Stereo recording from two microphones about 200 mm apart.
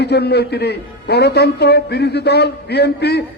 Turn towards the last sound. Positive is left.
turn(degrees=55)  # may be behind; listen again after turning